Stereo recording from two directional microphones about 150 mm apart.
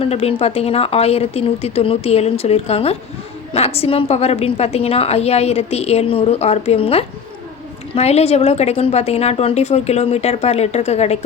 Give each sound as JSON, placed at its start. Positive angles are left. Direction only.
{"t": 0.0, "sound": "a woman's voice", "side_deg": 40}